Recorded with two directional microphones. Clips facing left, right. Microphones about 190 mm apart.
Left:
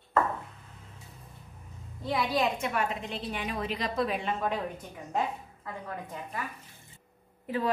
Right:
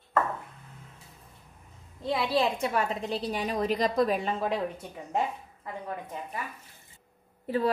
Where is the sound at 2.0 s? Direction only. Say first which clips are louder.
Right 2 dB; 25° right (ahead or behind).